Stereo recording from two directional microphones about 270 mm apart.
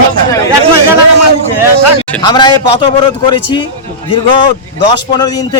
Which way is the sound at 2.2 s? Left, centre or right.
Centre.